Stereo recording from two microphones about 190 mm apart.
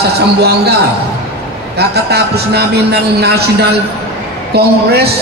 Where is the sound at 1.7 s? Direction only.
60° right (ahead or behind).